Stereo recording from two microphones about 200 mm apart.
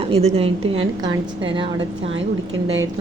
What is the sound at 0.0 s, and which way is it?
A woman's voice, 30° right (ahead or behind).